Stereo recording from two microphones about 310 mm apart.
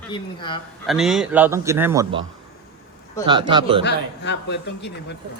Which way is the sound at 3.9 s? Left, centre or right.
Left.